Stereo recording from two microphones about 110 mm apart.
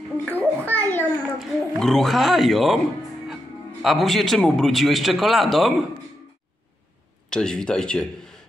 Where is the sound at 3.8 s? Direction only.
Centre (ahead or behind).